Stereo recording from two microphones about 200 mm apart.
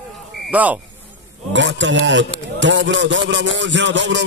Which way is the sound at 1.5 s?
65° right (ahead or behind).